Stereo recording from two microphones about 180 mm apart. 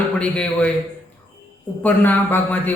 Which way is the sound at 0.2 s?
5° left (ahead or behind).